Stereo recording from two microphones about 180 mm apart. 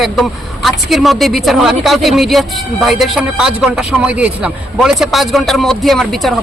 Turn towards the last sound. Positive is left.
turn(degrees=0)  # may be behind; listen again after turning